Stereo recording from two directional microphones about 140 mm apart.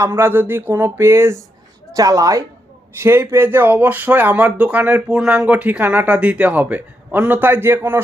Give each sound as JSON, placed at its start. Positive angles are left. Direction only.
{"t": 0.0, "sound": "a man's voice", "side_deg": -15}